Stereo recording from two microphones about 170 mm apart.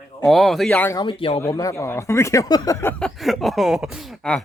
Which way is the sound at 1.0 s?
30° left (ahead or behind).